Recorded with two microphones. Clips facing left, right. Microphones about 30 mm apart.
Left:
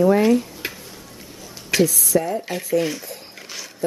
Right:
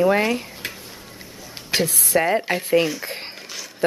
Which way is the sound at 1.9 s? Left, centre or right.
Right.